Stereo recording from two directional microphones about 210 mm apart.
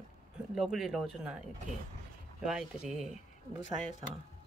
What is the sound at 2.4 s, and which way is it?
Speech, centre (ahead or behind).